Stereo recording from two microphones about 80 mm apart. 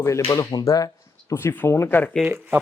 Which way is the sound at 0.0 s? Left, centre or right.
Left.